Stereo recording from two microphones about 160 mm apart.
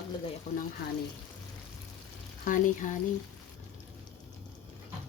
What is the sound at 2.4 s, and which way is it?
Speech, 60° left (ahead or behind).